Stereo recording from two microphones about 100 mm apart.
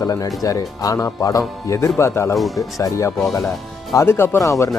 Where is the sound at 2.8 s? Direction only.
30° left (ahead or behind).